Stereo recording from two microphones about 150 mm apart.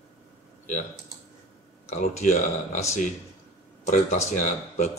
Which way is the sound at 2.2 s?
50° left (ahead or behind).